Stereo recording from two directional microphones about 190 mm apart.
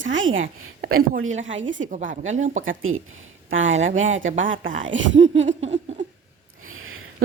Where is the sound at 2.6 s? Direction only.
90° right.